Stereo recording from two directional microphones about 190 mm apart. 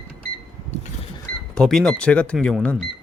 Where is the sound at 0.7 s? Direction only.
35° left (ahead or behind).